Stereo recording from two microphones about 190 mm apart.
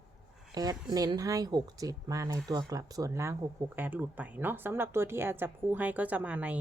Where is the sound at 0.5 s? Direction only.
20° right (ahead or behind).